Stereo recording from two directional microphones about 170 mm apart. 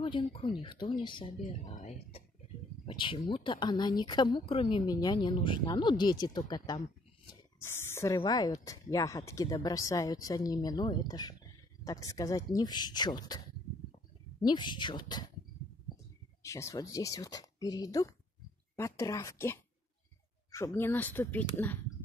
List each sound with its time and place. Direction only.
0.0 s speech: 30° left (ahead or behind)
2.8 s speech: 30° left (ahead or behind)
7.2 s a sound: 15° left (ahead or behind)
8.2 s speech: 25° left (ahead or behind)
14.4 s speech: 25° left (ahead or behind)
16.4 s a woman's voice: 15° left (ahead or behind)